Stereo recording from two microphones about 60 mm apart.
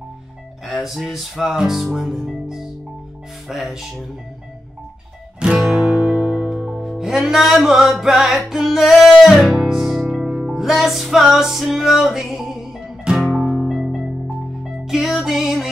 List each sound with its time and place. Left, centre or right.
0.7 s speech: centre
3.4 s speech: centre
5.4 s music: centre